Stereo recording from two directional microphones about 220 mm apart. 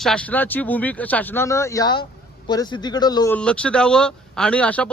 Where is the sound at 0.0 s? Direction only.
5° left (ahead or behind).